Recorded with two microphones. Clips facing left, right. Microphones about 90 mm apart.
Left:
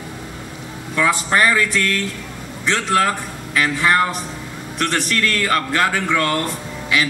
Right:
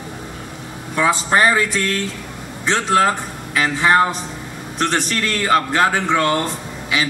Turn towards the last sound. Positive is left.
turn(degrees=-20)  # may be behind; listen again after turning